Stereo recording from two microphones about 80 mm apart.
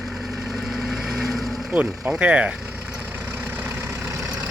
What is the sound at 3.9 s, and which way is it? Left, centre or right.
Vehicle, right.